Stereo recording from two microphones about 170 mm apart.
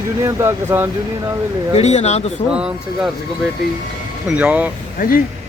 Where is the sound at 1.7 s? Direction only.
40° left (ahead or behind).